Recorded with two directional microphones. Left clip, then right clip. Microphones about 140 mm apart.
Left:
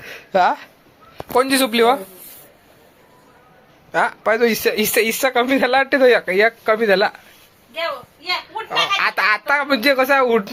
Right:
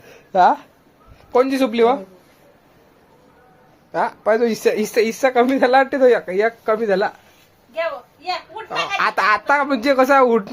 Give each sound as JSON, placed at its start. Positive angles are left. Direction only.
{"t": 0.0, "sound": "a sound", "side_deg": 0}
{"t": 1.3, "sound": "speech", "side_deg": 0}
{"t": 3.9, "sound": "speech", "side_deg": -10}
{"t": 4.9, "sound": "speech", "side_deg": -5}
{"t": 9.0, "sound": "speech", "side_deg": -20}